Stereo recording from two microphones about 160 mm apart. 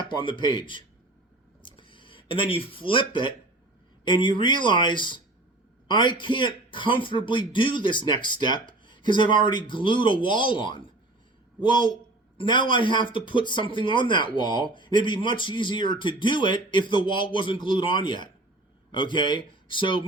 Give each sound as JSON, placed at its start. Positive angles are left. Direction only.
{"t": 0.1, "sound": "speech", "side_deg": 30}
{"t": 1.6, "sound": "a sound", "side_deg": 30}
{"t": 4.0, "sound": "speech", "side_deg": 30}
{"t": 12.4, "sound": "speech", "side_deg": 30}